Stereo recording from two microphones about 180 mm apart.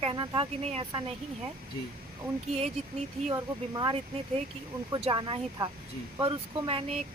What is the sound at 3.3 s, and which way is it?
Speech, 25° right (ahead or behind).